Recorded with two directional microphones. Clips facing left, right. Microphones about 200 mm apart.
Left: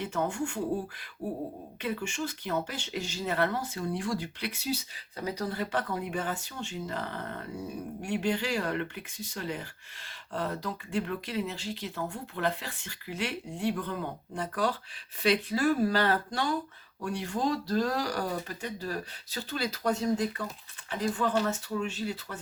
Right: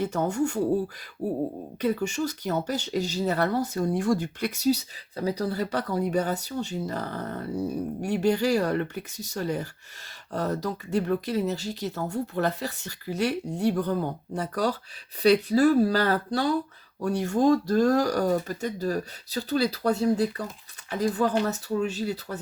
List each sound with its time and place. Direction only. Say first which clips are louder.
0.0 s speech: right 6 dB; 40° right (ahead or behind)
1.2 s a sound: right 6 dB; 60° right (ahead or behind)
1.8 s speech: right 7 dB; 40° right (ahead or behind)